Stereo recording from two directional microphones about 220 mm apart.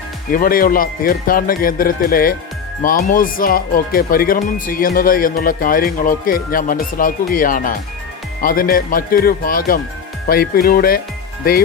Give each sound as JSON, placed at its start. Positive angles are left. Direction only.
{"t": 0.3, "sound": "speech", "side_deg": 40}